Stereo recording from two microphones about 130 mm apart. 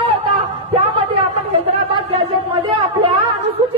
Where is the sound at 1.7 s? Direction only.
50° right (ahead or behind).